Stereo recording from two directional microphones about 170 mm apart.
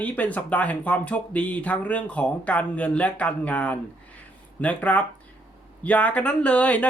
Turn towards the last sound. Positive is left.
turn(degrees=10)  # may be behind; listen again after turning